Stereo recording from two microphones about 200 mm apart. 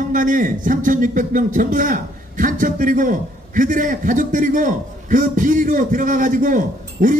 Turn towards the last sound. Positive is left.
turn(degrees=-40)  # may be behind; listen again after turning